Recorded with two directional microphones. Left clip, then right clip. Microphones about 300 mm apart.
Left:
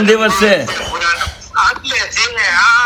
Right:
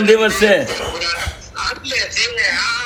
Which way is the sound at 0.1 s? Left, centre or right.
Left.